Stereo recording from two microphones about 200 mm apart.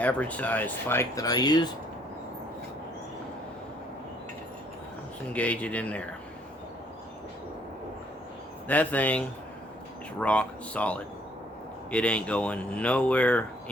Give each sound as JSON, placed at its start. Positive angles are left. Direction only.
{"t": 0.0, "sound": "speech", "side_deg": 5}
{"t": 5.3, "sound": "speech", "side_deg": 5}
{"t": 8.6, "sound": "speech", "side_deg": 10}